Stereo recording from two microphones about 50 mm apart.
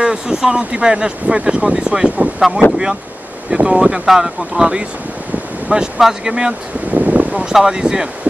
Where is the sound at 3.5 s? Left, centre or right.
Right.